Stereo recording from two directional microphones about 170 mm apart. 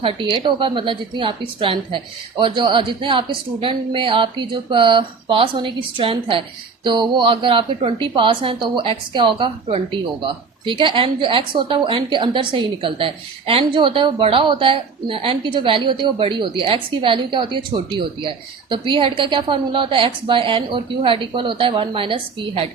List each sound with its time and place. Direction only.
0.0 s a woman's voice: 30° right (ahead or behind)